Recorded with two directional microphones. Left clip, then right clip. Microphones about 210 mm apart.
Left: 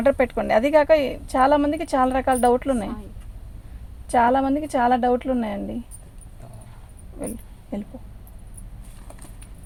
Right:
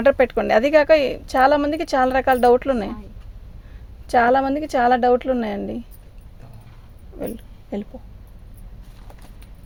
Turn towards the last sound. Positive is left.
turn(degrees=-40)  # may be behind; listen again after turning